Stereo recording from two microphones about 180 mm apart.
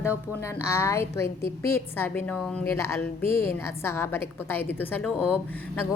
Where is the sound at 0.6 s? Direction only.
15° left (ahead or behind).